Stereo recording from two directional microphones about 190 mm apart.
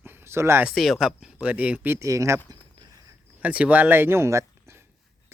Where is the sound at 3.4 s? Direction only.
5° right (ahead or behind).